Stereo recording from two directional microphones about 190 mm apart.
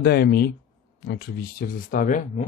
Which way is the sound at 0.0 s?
55° left (ahead or behind).